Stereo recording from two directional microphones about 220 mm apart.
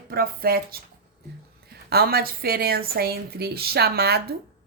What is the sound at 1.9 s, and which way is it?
A woman's voice, 45° right (ahead or behind).